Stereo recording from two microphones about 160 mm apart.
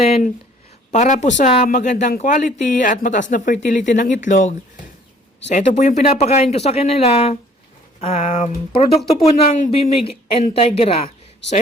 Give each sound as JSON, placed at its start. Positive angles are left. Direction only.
{"t": 0.9, "sound": "speech", "side_deg": 50}